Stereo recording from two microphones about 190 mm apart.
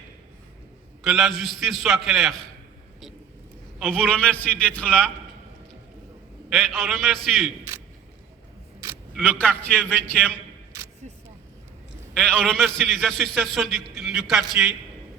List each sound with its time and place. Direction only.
1.0 s a man's voice: centre (ahead or behind)
3.8 s a man's voice: centre (ahead or behind)
6.5 s a man's voice: centre (ahead or behind)
9.1 s a man's voice: 5° left (ahead or behind)
11.0 s single-lens reflex camera: 35° right (ahead or behind)
12.1 s a man's voice: 5° left (ahead or behind)